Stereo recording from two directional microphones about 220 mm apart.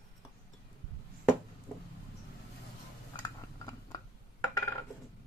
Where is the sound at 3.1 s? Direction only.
15° left (ahead or behind).